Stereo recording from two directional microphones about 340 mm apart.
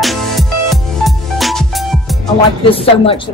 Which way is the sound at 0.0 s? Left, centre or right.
Centre.